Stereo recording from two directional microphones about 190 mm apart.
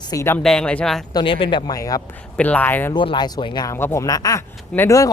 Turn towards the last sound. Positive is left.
turn(degrees=15)  # may be behind; listen again after turning